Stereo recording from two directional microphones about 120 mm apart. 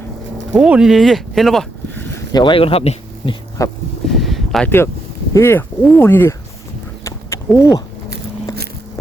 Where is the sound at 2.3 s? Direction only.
40° left (ahead or behind).